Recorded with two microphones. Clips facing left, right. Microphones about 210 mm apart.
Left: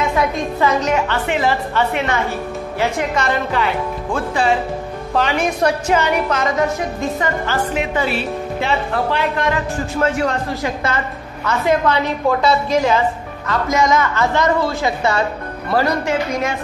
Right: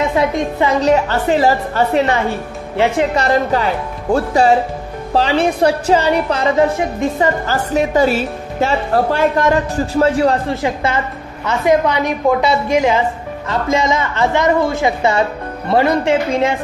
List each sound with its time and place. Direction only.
0.1 s a woman's voice: 20° right (ahead or behind)
0.7 s a woman's voice: 35° right (ahead or behind)
3.2 s a woman's voice: 40° right (ahead or behind)
10.6 s a woman's voice: 20° right (ahead or behind)
13.5 s a woman's voice: 25° right (ahead or behind)